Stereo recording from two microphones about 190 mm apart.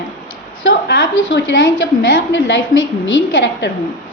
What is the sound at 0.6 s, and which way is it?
A woman's voice, 75° left (ahead or behind).